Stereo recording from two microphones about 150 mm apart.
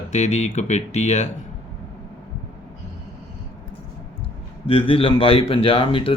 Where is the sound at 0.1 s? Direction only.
50° left (ahead or behind).